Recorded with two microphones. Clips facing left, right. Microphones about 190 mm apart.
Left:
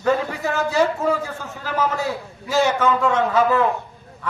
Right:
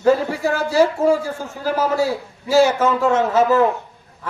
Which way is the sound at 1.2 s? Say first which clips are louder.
Right 6 dB; 30° right (ahead or behind).